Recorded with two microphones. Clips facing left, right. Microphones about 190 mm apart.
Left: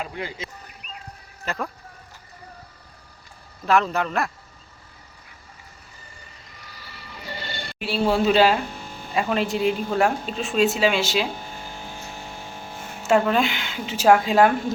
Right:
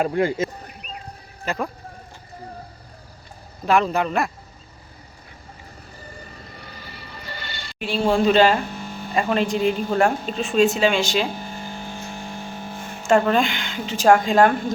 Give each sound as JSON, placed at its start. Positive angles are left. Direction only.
{"t": 0.0, "sound": "speech", "side_deg": -50}
{"t": 1.5, "sound": "speech", "side_deg": 0}
{"t": 3.7, "sound": "speech", "side_deg": 0}
{"t": 7.5, "sound": "a sound", "side_deg": 55}
{"t": 7.8, "sound": "speech", "side_deg": 5}
{"t": 13.0, "sound": "speech", "side_deg": 5}